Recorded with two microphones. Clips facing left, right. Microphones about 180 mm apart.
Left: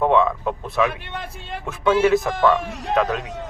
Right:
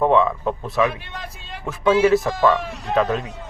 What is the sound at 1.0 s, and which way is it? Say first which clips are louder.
Speech: left 3 dB; 55° left (ahead or behind).